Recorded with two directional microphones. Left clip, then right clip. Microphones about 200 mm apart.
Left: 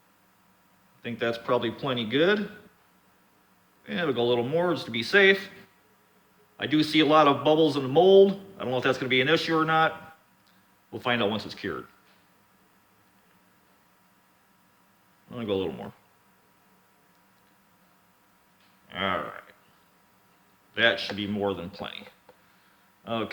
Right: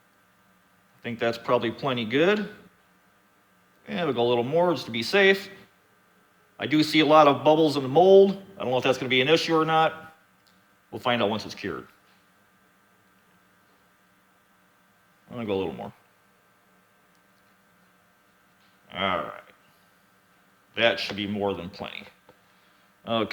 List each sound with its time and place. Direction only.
1.0 s a man's voice: 25° right (ahead or behind)
3.8 s a man's voice: 25° right (ahead or behind)
6.6 s a man's voice: 25° right (ahead or behind)
10.9 s a man's voice: 20° right (ahead or behind)
15.3 s speech: 20° right (ahead or behind)
18.9 s a sound: 20° right (ahead or behind)
20.7 s a man's voice: 20° right (ahead or behind)
23.0 s speech: 45° right (ahead or behind)